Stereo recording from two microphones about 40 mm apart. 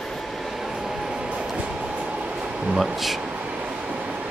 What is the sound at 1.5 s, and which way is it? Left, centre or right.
Train, right.